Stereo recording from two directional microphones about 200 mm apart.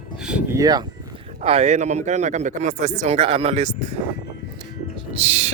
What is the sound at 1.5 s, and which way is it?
Speech, 30° right (ahead or behind).